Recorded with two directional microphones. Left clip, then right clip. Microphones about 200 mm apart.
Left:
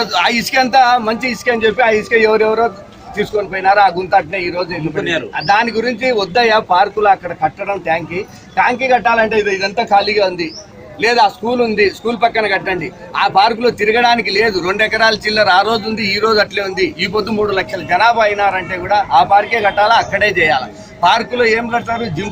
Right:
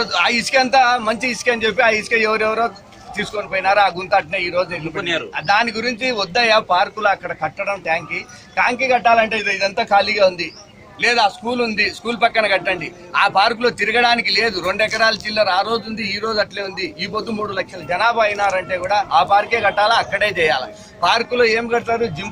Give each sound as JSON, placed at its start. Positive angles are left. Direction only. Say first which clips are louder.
{"t": 0.0, "sound": "a man's voice", "louder": "left 3 dB", "side_deg": -5}
{"t": 4.9, "sound": "a man's voice", "louder": "left 4 dB", "side_deg": 35}
{"t": 5.3, "sound": "a man's voice", "louder": "left 4 dB", "side_deg": 0}